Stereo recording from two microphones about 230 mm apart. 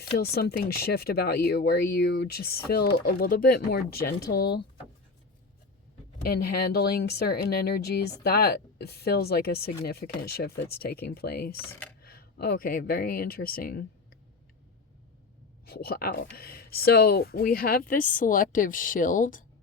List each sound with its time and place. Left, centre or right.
0.0 s speech: left
6.2 s speech: left
11.5 s speech: centre
12.0 s speech: left
15.6 s speech: left